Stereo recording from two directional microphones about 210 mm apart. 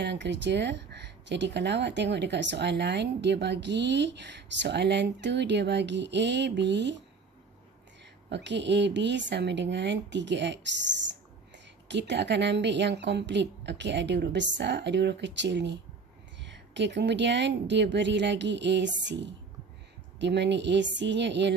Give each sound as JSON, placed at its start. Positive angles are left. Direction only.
{"t": 0.0, "sound": "speech", "side_deg": -55}
{"t": 8.3, "sound": "speech", "side_deg": -55}